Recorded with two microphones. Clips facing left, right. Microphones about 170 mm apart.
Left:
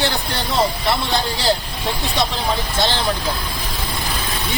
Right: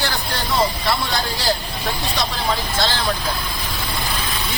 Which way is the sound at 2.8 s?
20° left (ahead or behind).